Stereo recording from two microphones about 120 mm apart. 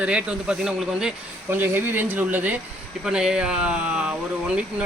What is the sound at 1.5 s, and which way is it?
Speech, 15° right (ahead or behind).